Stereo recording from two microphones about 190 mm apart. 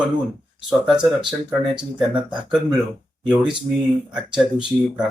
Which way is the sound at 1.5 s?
5° right (ahead or behind).